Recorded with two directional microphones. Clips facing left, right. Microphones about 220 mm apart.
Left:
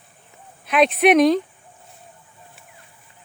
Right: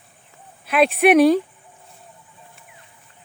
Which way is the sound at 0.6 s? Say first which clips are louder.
Even; 5° right (ahead or behind).